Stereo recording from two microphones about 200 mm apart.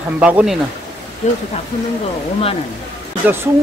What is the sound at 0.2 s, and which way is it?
Speech, 5° right (ahead or behind).